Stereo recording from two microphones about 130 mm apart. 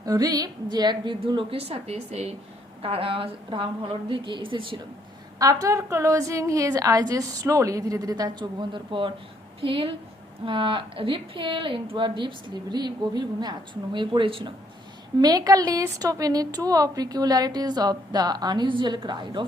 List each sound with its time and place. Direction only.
0.0 s a woman's voice: 30° right (ahead or behind)
5.4 s a woman's voice: 25° right (ahead or behind)
15.2 s a woman's voice: 30° right (ahead or behind)